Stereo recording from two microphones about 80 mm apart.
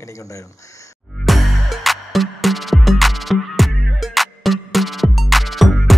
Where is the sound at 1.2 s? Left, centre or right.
Centre.